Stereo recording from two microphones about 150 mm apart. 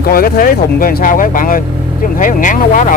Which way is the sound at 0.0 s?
85° left.